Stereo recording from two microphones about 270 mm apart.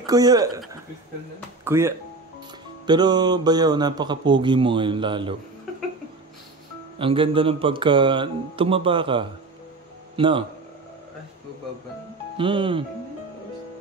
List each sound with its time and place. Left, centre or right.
0.0 s speech: centre
1.6 s speech: centre
7.0 s speech: centre
12.4 s speech: centre